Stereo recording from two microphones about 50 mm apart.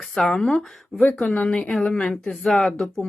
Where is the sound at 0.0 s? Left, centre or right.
Centre.